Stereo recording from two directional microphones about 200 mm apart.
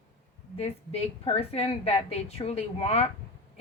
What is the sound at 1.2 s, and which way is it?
A woman's voice, 30° left (ahead or behind).